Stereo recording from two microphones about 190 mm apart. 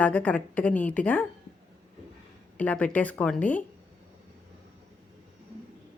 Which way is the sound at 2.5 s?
5° left (ahead or behind).